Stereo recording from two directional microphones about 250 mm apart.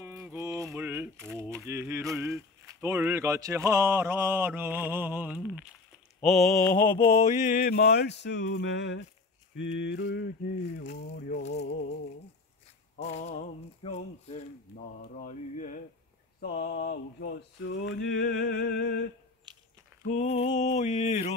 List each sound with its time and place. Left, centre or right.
0.0 s speech: centre
6.2 s mantra: centre
7.1 s mantra: left
9.6 s a sound: left
10.8 s mantra: left
12.9 s speech: left
16.3 s mantra: left
19.5 s a sound: centre
20.1 s speech: left